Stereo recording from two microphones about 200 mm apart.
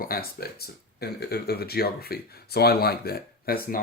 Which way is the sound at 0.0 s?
50° left (ahead or behind).